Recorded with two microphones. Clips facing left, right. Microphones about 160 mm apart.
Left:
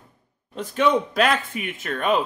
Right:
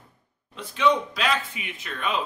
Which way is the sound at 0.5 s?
45° left (ahead or behind).